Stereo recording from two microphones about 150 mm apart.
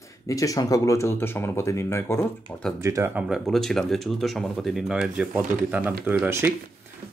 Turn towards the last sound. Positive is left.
turn(degrees=-15)  # may be behind; listen again after turning